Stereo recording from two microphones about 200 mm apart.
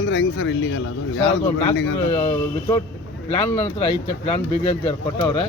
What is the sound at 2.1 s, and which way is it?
Speech, 25° left (ahead or behind).